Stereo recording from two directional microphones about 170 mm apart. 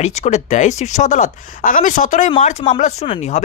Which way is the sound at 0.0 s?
40° left (ahead or behind).